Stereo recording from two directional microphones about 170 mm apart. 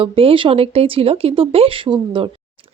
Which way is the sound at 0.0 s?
30° right (ahead or behind).